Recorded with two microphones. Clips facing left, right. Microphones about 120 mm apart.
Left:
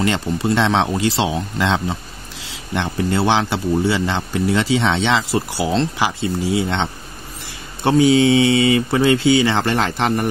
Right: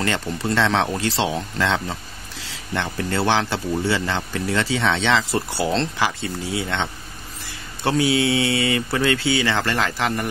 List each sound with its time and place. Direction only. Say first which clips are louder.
0.0 s speech: left 5 dB; 20° left (ahead or behind)
5.3 s speech: left 3 dB; 5° left (ahead or behind)
5.9 s speech: left 4 dB; 20° left (ahead or behind)